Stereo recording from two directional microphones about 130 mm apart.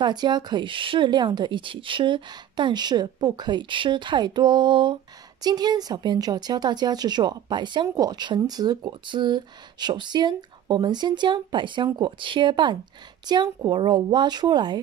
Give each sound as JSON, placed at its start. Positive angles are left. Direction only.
{"t": 0.0, "sound": "a woman's voice", "side_deg": -35}